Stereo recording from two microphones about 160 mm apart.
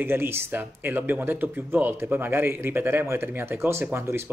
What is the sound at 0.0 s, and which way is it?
Speech, 15° right (ahead or behind).